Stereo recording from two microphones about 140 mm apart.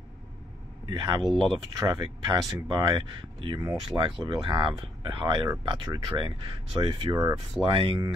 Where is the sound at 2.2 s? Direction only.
30° right (ahead or behind).